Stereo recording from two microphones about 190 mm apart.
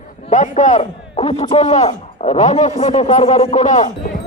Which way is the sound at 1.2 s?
30° left (ahead or behind).